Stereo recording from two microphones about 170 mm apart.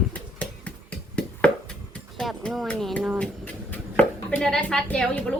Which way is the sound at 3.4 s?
10° left (ahead or behind).